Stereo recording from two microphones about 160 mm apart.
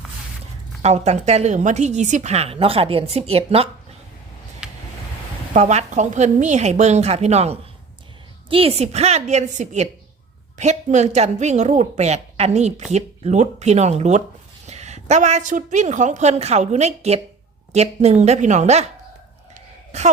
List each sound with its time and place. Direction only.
0.8 s a woman's voice: 40° right (ahead or behind)
4.6 s vehicle: 5° right (ahead or behind)
5.5 s a woman's voice: 45° right (ahead or behind)
19.9 s a woman's voice: 45° right (ahead or behind)